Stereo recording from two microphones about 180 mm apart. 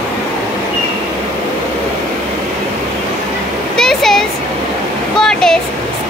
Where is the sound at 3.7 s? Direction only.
5° left (ahead or behind).